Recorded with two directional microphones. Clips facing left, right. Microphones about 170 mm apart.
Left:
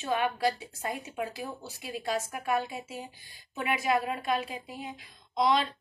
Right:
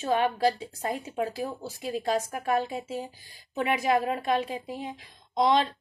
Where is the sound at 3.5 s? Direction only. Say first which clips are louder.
Right 3 dB; 30° right (ahead or behind).